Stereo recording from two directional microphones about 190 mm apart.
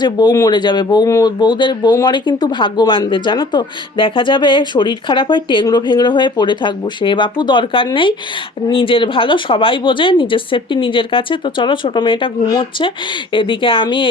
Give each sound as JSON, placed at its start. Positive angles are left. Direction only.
{"t": 0.0, "sound": "speech", "side_deg": 20}